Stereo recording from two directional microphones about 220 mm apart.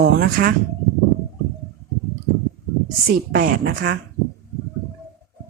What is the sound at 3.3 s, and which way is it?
Speech, 40° right (ahead or behind).